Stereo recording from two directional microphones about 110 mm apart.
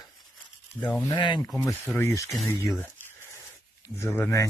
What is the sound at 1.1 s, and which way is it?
Speech, 45° left (ahead or behind).